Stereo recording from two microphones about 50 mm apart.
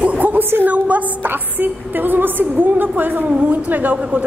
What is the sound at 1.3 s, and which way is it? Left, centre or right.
A woman's voice, right.